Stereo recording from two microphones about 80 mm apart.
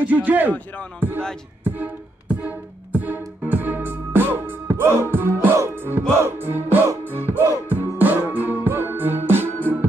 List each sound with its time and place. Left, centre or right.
0.0 s a sound: centre
0.5 s speech: centre
1.6 s music: right